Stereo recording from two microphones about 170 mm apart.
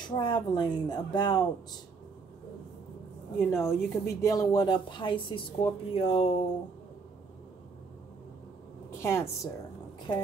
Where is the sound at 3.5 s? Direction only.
15° left (ahead or behind); by 6.4 s 35° left (ahead or behind).